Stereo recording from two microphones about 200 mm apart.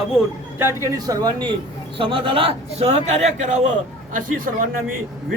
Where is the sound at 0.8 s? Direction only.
20° right (ahead or behind); by 4.7 s 45° right (ahead or behind).